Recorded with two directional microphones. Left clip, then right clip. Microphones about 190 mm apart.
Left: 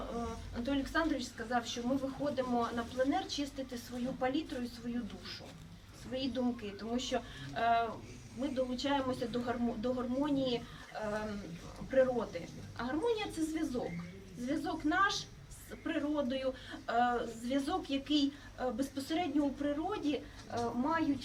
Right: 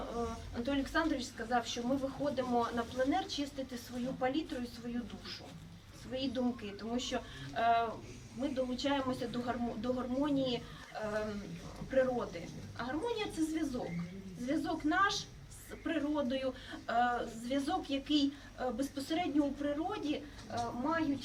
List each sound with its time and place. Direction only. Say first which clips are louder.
0.0 s a woman's voice: right 1 dB; centre (ahead or behind)